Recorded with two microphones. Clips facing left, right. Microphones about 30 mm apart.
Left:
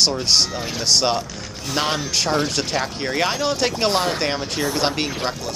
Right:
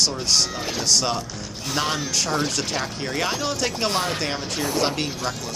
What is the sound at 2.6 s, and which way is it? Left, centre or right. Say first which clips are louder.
Speech: left 3 dB; centre.